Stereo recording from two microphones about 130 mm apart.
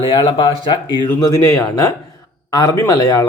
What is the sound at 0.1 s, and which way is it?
Speech, 45° left (ahead or behind).